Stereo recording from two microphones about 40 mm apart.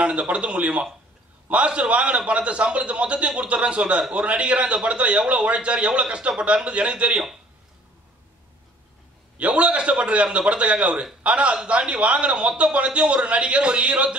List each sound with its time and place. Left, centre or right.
0.0 s a man's voice: right
9.4 s a man's voice: right